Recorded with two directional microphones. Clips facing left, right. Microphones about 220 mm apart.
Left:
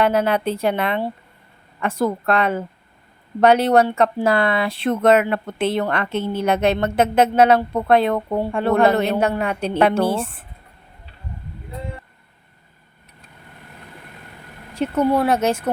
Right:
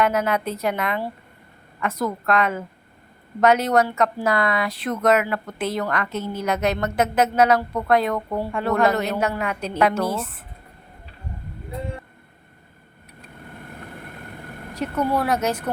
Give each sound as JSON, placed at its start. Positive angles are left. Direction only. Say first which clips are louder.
{"t": 0.0, "sound": "a woman's voice", "louder": "left 3 dB", "side_deg": 30}
{"t": 14.8, "sound": "speech", "louder": "left 5 dB", "side_deg": 25}